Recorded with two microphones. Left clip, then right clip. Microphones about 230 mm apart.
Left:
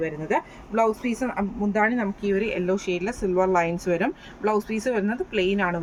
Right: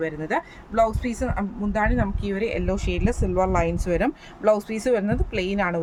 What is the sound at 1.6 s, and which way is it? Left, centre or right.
Speech, right.